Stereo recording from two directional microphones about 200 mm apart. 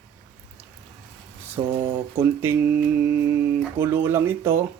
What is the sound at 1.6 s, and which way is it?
Speech, 15° right (ahead or behind).